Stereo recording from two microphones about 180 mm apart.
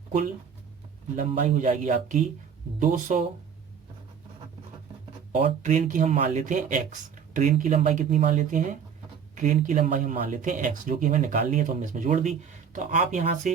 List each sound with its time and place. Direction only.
1.3 s speech: 40° right (ahead or behind)
5.3 s speech: 45° right (ahead or behind)